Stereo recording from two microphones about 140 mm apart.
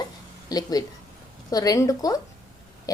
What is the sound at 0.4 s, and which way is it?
A woman's voice, 30° left (ahead or behind).